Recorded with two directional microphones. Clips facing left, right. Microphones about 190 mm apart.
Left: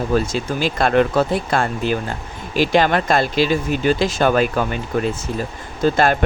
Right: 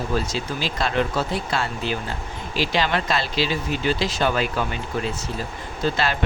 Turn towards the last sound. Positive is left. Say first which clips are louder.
# left 7 dB
turn(degrees=50)  # may be behind; listen again after turning